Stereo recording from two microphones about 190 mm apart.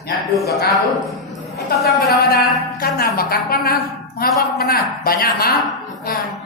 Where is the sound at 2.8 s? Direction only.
50° left (ahead or behind).